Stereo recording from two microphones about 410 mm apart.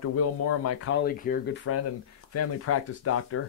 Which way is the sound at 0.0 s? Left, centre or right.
Left.